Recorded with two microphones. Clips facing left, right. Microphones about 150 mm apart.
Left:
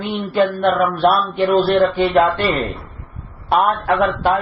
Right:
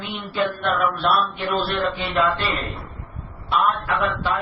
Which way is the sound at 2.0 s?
50° left (ahead or behind).